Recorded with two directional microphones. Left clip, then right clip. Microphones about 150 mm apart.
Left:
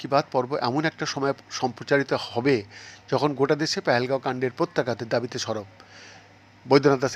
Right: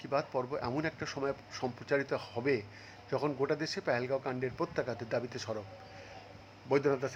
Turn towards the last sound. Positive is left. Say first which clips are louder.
# left 11 dB
turn(degrees=30)  # may be behind; listen again after turning